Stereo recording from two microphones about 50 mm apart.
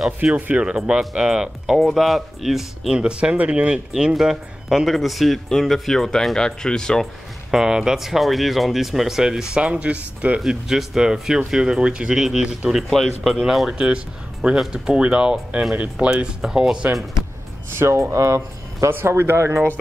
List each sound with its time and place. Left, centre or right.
0.2 s speech: right
1.8 s speech: centre
2.9 s speech: centre
4.1 s speech: centre
7.5 s speech: centre
9.6 s speech: right
10.4 s speech: centre
13.7 s speech: right
16.4 s speech: centre
17.7 s speech: right
18.1 s speech: right
19.0 s speech: right